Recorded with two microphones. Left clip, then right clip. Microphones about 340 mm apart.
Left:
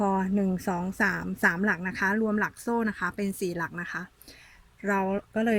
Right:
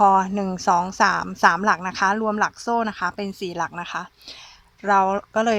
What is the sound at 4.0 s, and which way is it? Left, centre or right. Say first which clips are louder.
A woman's voice: right 7 dB; right.